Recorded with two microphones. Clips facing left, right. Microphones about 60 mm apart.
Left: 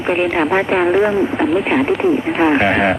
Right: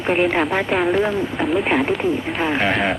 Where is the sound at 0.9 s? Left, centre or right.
Left.